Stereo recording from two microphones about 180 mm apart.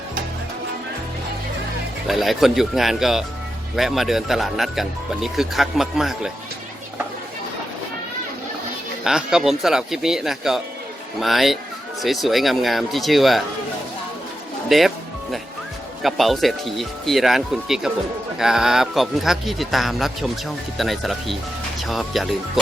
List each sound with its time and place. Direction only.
2.0 s speech: centre (ahead or behind)
9.0 s speech: 5° right (ahead or behind)
14.7 s music: centre (ahead or behind)
16.0 s speech: centre (ahead or behind)